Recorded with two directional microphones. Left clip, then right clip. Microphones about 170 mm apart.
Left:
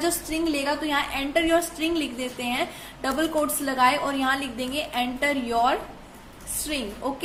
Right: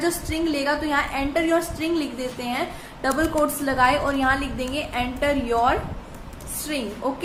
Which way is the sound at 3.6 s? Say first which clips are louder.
Right 1 dB; 30° left (ahead or behind).